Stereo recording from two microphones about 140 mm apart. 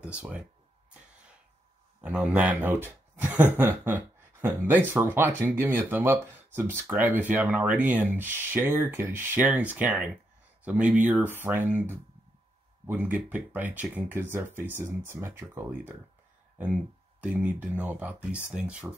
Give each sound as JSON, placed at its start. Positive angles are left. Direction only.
{"t": 0.0, "sound": "speech", "side_deg": -10}
{"t": 2.0, "sound": "speech", "side_deg": -10}
{"t": 17.2, "sound": "speech", "side_deg": -10}